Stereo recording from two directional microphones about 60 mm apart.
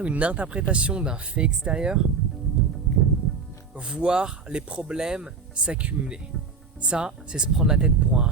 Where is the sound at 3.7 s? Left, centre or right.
Centre.